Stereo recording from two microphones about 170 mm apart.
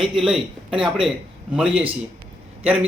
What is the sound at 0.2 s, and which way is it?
Speech, 5° right (ahead or behind).